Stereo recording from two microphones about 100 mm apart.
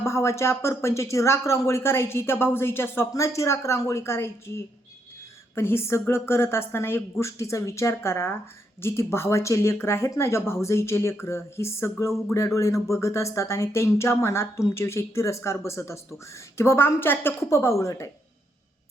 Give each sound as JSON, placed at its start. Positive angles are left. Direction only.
{"t": 0.0, "sound": "speech", "side_deg": 30}